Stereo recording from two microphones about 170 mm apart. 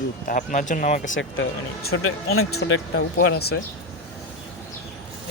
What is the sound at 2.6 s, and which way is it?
Speech, 90° left.